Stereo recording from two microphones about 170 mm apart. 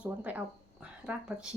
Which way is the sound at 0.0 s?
10° right (ahead or behind).